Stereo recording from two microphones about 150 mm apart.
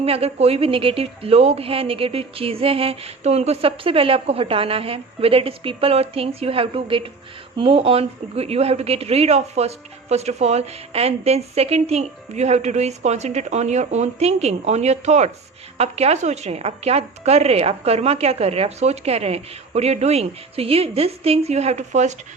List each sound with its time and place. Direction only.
0.0 s a woman's voice: 40° right (ahead or behind)